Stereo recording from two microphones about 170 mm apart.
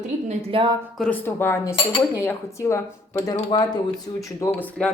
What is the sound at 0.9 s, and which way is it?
Speech, 10° left (ahead or behind).